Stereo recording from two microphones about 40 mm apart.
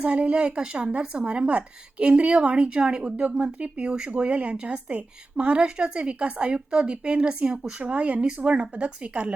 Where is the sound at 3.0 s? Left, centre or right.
Right.